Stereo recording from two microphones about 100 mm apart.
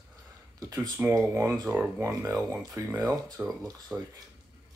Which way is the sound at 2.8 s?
35° right (ahead or behind).